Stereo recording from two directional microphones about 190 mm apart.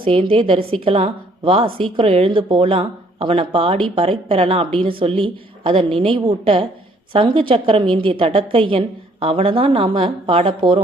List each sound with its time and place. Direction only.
0.0 s a woman's voice: 30° right (ahead or behind)